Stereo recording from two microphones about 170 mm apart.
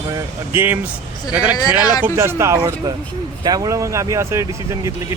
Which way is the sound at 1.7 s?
10° right (ahead or behind).